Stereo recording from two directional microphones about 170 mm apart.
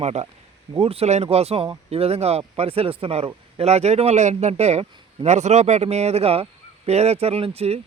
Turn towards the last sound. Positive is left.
turn(degrees=-35)  # may be behind; listen again after turning